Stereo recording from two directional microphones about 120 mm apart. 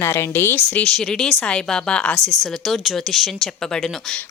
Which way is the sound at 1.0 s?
5° left (ahead or behind).